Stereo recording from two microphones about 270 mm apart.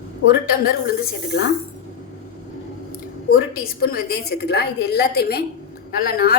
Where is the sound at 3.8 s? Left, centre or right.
Left.